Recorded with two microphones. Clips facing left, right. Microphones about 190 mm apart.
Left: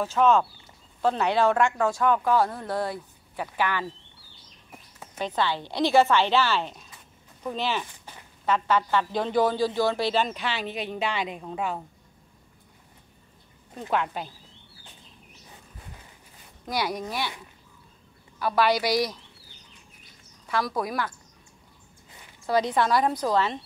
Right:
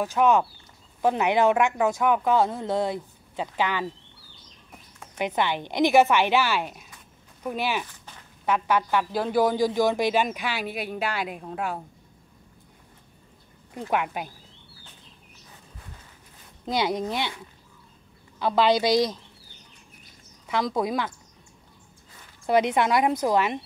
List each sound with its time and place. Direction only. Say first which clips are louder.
0.0 s speech: even; 15° right (ahead or behind)
5.2 s speech: right 1 dB; 20° right (ahead or behind)
8.0 s a sound: left 1 dB; 10° left (ahead or behind)
8.5 s speech: even; 10° right (ahead or behind)
13.7 s speech: right 1 dB; 15° right (ahead or behind)
16.6 s speech: right 4 dB; 25° right (ahead or behind)
18.4 s speech: right 2 dB; 20° right (ahead or behind)
20.4 s speech: right 2 dB; 20° right (ahead or behind)
22.5 s speech: right 2 dB; 20° right (ahead or behind)